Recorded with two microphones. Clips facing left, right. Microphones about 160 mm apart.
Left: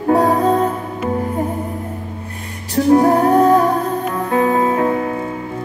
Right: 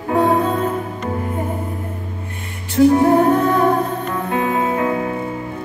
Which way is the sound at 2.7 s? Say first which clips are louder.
Even; 40° left (ahead or behind).